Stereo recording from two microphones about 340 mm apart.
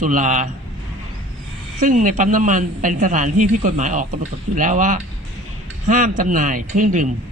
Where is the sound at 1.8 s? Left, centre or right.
Right.